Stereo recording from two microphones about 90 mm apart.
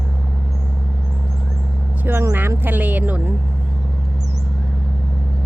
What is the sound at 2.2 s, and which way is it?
Speech, 25° right (ahead or behind).